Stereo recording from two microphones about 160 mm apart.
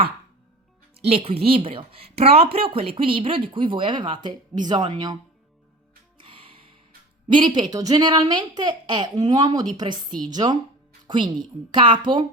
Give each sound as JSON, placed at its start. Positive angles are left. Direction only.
{"t": 1.0, "sound": "speech", "side_deg": -40}
{"t": 6.2, "sound": "music", "side_deg": -35}
{"t": 7.3, "sound": "a woman's voice", "side_deg": -30}